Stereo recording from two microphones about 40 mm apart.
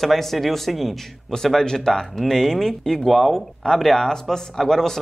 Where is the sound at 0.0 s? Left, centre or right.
Centre.